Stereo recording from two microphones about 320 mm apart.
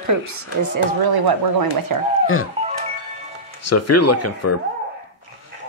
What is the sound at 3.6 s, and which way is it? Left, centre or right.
Speech, left.